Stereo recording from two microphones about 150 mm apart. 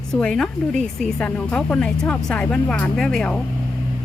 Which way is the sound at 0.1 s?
5° left (ahead or behind).